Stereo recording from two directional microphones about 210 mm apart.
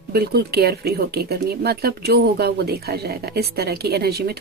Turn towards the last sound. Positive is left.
turn(degrees=-50)  # may be behind; listen again after turning